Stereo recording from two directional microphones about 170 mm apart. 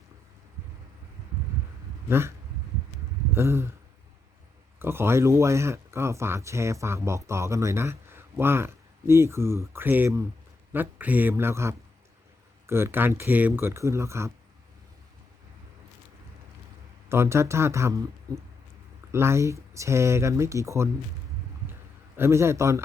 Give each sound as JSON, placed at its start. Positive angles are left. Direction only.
{"t": 2.0, "sound": "speech", "side_deg": -15}
{"t": 3.3, "sound": "speech", "side_deg": -15}
{"t": 4.8, "sound": "speech", "side_deg": -15}
{"t": 17.1, "sound": "speech", "side_deg": -15}
{"t": 22.2, "sound": "speech", "side_deg": -15}